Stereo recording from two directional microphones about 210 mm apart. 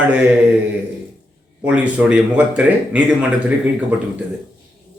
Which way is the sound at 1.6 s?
5° right (ahead or behind).